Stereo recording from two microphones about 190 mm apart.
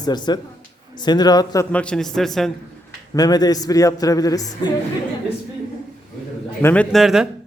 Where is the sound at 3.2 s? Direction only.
20° left (ahead or behind).